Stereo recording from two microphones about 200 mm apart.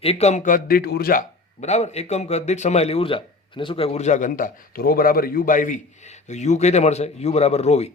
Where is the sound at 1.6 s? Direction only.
35° left (ahead or behind).